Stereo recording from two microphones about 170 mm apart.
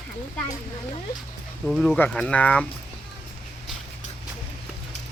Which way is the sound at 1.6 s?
5° left (ahead or behind).